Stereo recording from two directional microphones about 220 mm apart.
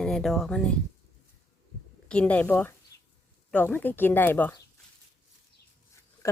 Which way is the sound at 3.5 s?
10° left (ahead or behind).